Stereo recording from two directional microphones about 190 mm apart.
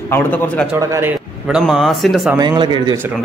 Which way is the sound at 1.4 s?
5° right (ahead or behind).